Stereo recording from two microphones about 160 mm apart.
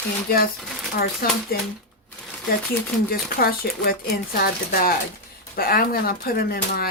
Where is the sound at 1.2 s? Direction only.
75° left (ahead or behind).